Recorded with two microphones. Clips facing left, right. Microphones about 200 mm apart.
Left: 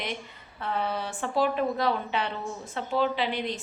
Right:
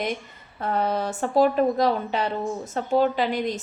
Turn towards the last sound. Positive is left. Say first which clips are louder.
# right 5 dB
turn(degrees=-45)  # may be behind; listen again after turning